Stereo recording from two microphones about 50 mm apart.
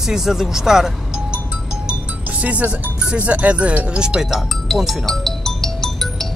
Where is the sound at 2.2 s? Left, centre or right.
Right.